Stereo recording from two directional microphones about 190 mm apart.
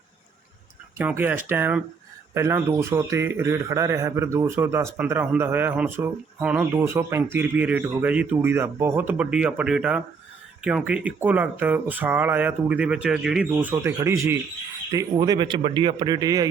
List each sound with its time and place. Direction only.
0.9 s speech: 10° right (ahead or behind)